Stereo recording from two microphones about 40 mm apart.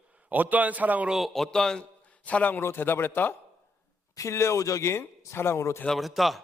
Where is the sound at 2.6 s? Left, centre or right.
Left.